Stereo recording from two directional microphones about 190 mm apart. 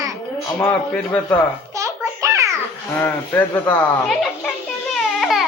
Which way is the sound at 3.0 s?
10° left (ahead or behind).